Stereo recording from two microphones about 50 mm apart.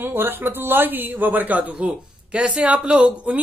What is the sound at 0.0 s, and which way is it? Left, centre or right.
Speech, right.